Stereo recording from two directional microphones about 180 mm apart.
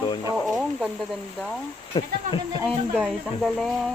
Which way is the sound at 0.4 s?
Centre (ahead or behind).